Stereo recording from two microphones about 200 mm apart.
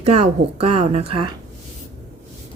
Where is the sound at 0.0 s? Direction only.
35° right (ahead or behind).